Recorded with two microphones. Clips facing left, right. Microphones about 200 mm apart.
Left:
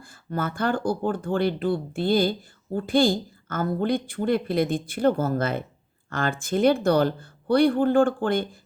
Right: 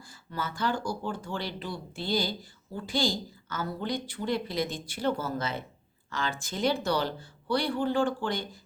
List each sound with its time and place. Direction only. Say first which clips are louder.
0.0 s a woman's voice: left 7 dB; 55° left (ahead or behind)